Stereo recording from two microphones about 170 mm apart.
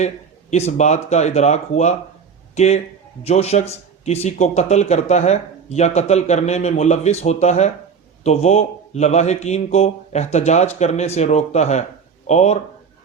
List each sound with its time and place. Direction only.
0.5 s speech: 40° left (ahead or behind)